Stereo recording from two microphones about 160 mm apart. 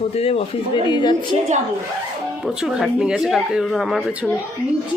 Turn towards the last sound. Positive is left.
turn(degrees=0)  # may be behind; listen again after turning